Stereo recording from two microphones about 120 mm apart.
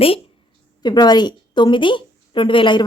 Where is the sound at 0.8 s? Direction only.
35° left (ahead or behind).